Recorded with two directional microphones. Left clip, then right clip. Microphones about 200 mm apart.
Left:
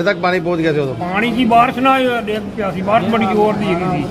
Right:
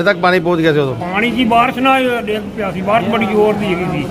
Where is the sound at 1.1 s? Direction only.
Centre (ahead or behind).